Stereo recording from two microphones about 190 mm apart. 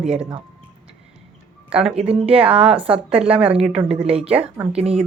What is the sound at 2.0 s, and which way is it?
Speech, 30° right (ahead or behind).